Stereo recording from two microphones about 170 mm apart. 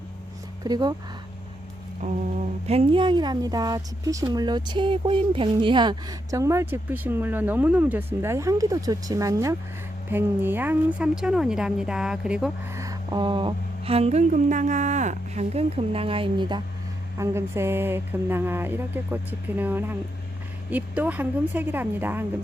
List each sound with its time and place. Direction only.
0.6 s speech: 25° right (ahead or behind)
2.0 s a woman's voice: 45° right (ahead or behind); by 12.5 s 5° right (ahead or behind)
12.7 s speech: 20° right (ahead or behind)
17.2 s speech: 15° right (ahead or behind)